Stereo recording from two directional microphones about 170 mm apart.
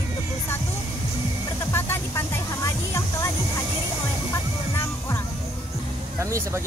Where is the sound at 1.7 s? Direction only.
15° left (ahead or behind).